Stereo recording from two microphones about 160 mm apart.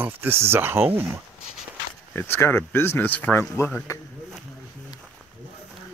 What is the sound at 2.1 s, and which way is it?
Speech, 10° left (ahead or behind).